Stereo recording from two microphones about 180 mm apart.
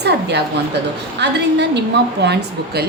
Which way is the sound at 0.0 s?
70° right (ahead or behind).